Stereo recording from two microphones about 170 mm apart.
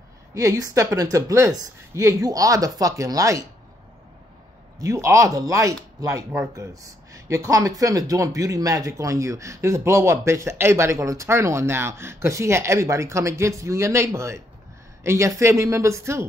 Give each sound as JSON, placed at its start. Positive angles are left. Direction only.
{"t": 0.3, "sound": "speech", "side_deg": -20}
{"t": 4.7, "sound": "speech", "side_deg": -20}